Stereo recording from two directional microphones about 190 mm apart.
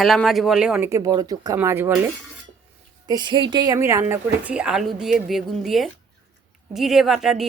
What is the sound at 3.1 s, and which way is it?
A woman's voice, 25° right (ahead or behind).